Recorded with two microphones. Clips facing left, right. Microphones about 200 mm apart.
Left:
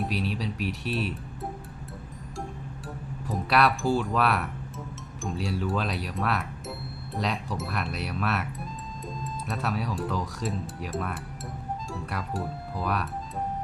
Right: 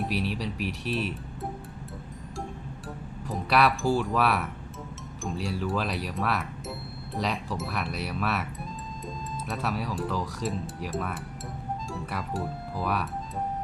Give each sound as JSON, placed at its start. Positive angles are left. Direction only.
{"t": 0.0, "sound": "speech", "side_deg": 0}
{"t": 3.2, "sound": "speech", "side_deg": 0}
{"t": 9.5, "sound": "speech", "side_deg": 0}